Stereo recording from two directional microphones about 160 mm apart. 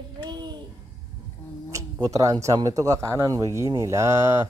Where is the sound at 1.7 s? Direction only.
20° right (ahead or behind).